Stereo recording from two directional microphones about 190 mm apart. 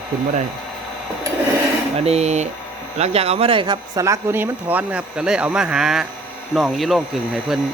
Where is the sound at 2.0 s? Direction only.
35° right (ahead or behind).